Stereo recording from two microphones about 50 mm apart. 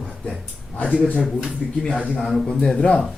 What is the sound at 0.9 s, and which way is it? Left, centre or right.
Speech, left.